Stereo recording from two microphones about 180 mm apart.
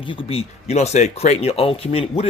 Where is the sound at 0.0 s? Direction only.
30° left (ahead or behind).